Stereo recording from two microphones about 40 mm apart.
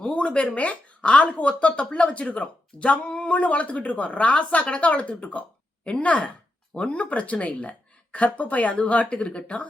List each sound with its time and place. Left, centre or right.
0.1 s speech: left